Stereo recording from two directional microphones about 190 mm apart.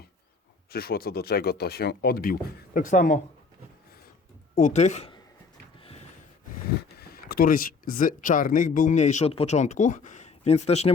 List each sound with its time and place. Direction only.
0.7 s speech: 55° left (ahead or behind)
4.5 s speech: 40° left (ahead or behind)
7.0 s speech: 55° left (ahead or behind); by 10.9 s 35° left (ahead or behind)